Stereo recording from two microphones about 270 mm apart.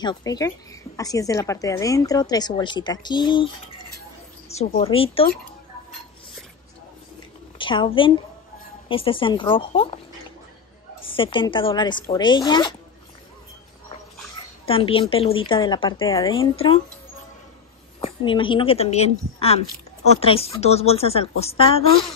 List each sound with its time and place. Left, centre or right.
0.0 s a woman's voice: centre
4.6 s a woman's voice: left
7.5 s a woman's voice: centre
11.1 s a woman's voice: centre
14.7 s a woman's voice: centre
18.0 s a woman's voice: centre